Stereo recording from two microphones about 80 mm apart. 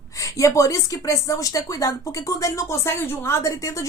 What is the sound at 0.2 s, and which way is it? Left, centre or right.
A woman's voice, left.